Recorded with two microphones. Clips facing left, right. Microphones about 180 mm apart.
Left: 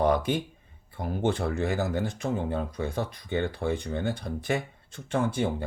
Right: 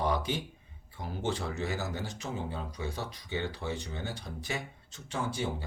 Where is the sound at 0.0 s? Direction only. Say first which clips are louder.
Left 7 dB; 55° left (ahead or behind).